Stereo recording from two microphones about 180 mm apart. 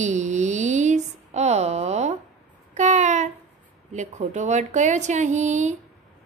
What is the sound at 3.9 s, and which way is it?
A woman's voice, 40° right (ahead or behind).